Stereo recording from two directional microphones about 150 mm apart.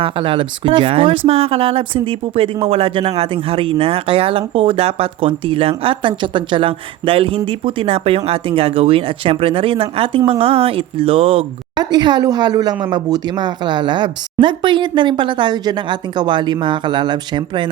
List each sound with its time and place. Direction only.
0.0 s speech: 35° right (ahead or behind)
11.8 s speech: 30° right (ahead or behind)